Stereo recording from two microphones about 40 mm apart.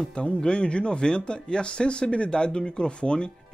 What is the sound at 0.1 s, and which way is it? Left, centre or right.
Speech, left.